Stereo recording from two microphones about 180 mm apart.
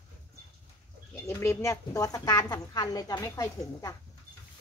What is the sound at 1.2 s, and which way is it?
A woman's voice, 15° left (ahead or behind).